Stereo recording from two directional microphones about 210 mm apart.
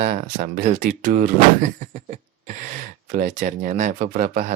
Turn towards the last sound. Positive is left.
turn(degrees=-40)  # may be behind; listen again after turning